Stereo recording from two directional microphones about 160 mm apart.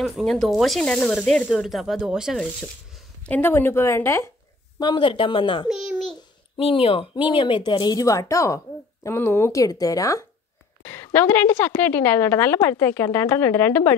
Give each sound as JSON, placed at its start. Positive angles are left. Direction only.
{"t": 0.0, "sound": "speech", "side_deg": 0}
{"t": 3.3, "sound": "a woman's voice", "side_deg": 10}
{"t": 4.7, "sound": "a woman's voice", "side_deg": 30}
{"t": 5.7, "sound": "babbling", "side_deg": -5}
{"t": 6.5, "sound": "a woman's voice", "side_deg": 35}